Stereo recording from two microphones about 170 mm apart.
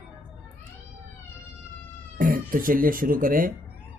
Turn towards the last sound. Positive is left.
turn(degrees=-55)  # may be behind; listen again after turning